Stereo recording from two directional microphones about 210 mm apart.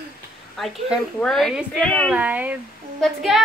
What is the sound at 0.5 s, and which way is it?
Speech, centre (ahead or behind).